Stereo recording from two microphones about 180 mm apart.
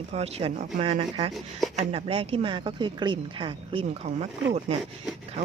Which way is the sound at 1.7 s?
30° right (ahead or behind).